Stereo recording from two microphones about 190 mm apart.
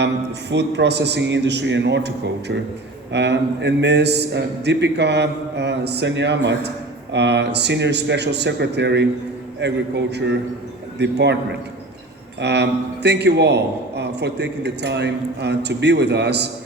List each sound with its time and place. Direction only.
0.5 s a man's voice: 65° right (ahead or behind)
12.4 s a man's voice: 65° right (ahead or behind)